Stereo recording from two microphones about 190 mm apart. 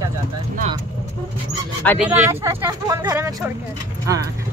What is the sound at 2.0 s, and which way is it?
Speech, 10° right (ahead or behind).